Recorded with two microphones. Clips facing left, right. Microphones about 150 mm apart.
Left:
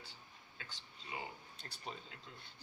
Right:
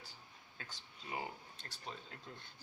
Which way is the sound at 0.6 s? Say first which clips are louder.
Right 2 dB; 40° right (ahead or behind).